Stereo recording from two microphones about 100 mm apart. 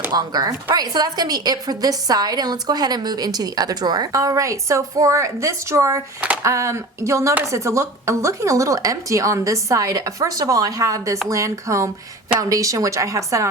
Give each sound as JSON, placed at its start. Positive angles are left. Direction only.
{"t": 0.1, "sound": "a woman's voice", "side_deg": -40}